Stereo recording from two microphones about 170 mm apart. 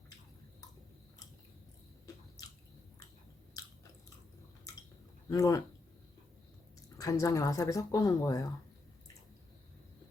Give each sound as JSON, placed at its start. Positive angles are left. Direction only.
{"t": 3.6, "sound": "chewing", "side_deg": 20}
{"t": 5.3, "sound": "speech", "side_deg": 20}
{"t": 7.0, "sound": "speech", "side_deg": 20}